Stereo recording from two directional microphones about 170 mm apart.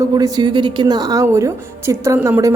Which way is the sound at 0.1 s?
25° right (ahead or behind).